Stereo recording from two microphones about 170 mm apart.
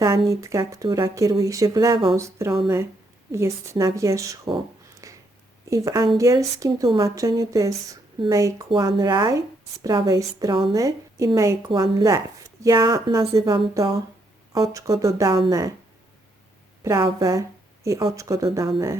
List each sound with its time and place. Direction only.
0.3 s a woman's voice: 20° right (ahead or behind)
5.0 s a sound: 20° right (ahead or behind)
5.6 s speech: 20° right (ahead or behind)
16.8 s speech: 20° right (ahead or behind)